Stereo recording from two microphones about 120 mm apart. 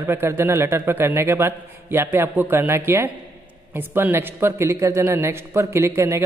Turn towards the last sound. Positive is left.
turn(degrees=-20)  # may be behind; listen again after turning